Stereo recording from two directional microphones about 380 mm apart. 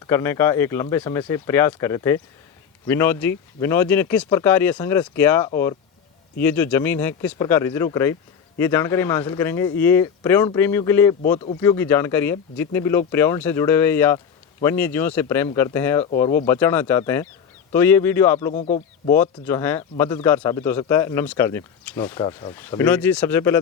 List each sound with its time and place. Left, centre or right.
0.1 s speech: centre
18.3 s speech: centre
19.1 s speech: centre